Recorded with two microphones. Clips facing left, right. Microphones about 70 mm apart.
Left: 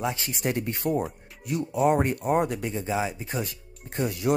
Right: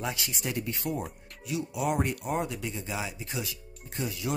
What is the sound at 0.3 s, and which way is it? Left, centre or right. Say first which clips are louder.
Speech: left 5 dB; left.